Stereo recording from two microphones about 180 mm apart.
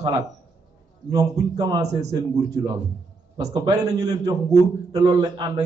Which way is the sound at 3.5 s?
20° right (ahead or behind).